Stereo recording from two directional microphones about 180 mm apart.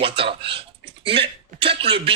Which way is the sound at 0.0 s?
30° right (ahead or behind).